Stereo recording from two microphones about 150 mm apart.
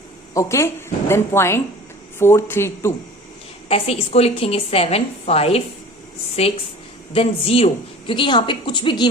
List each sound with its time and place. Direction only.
0.3 s a woman's voice: 20° left (ahead or behind)
3.7 s a woman's voice: 40° left (ahead or behind)
7.1 s a woman's voice: 40° left (ahead or behind)